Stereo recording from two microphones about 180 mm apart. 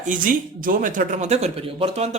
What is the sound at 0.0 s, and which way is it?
Speech, 45° right (ahead or behind).